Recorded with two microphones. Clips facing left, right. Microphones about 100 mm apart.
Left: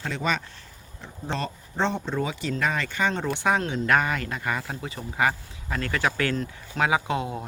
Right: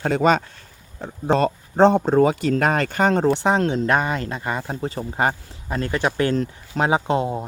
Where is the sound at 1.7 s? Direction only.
45° right (ahead or behind).